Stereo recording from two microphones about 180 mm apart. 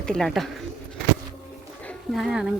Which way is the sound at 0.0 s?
Centre (ahead or behind).